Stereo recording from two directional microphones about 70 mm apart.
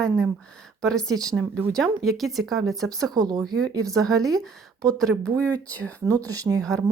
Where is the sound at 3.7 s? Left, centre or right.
Right.